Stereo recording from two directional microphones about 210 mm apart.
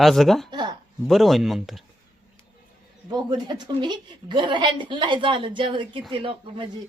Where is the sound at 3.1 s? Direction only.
20° right (ahead or behind).